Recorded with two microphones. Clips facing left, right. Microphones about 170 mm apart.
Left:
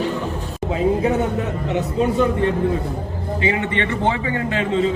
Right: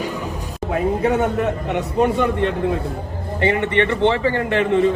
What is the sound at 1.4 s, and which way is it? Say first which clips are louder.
A man's voice: right 1 dB; 65° right (ahead or behind).